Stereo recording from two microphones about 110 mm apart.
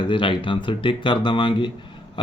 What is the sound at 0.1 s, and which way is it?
Speech, 50° left (ahead or behind).